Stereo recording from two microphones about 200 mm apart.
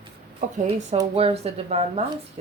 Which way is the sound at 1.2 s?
30° right (ahead or behind).